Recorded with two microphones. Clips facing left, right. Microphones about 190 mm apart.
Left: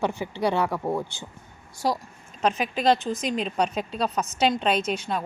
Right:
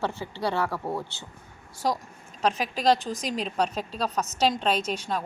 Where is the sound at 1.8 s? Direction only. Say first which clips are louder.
Left 1 dB; 5° left (ahead or behind).